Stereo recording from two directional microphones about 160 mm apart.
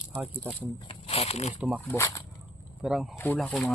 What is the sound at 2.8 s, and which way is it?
Speech, 5° right (ahead or behind).